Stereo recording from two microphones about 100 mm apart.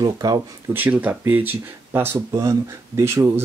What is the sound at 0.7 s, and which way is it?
Speech, 20° right (ahead or behind).